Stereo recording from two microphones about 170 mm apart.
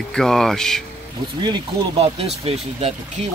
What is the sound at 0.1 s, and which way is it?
Speech, centre (ahead or behind).